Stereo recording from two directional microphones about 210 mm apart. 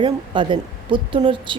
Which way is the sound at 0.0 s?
25° right (ahead or behind).